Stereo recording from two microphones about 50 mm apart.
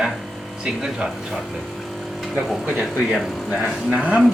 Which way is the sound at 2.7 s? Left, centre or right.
Right.